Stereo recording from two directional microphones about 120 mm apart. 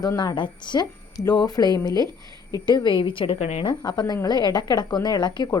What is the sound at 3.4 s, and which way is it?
Speech, 65° left (ahead or behind).